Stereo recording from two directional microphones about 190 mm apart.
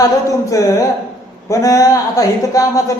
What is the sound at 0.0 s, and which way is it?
Speech, 15° left (ahead or behind).